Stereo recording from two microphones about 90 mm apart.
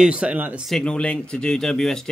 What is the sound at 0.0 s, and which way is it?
Speech, 15° right (ahead or behind).